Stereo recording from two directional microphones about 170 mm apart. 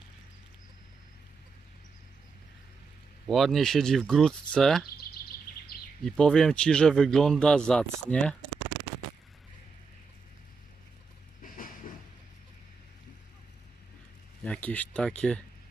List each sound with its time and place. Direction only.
3.2 s a man's voice: centre (ahead or behind)
5.7 s a sound: 65° left (ahead or behind)
6.1 s a man's voice: 5° left (ahead or behind)
11.4 s train: 55° left (ahead or behind)
14.4 s speech: 5° left (ahead or behind)